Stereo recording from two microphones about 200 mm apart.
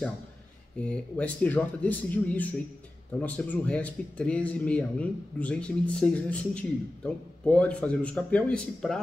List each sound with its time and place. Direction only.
0.7 s speech: 5° left (ahead or behind)